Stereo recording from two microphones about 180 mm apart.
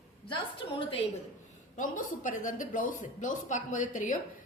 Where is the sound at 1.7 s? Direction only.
45° left (ahead or behind).